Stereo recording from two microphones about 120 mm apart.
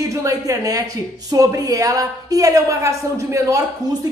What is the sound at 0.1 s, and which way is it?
A woman's voice, 25° right (ahead or behind).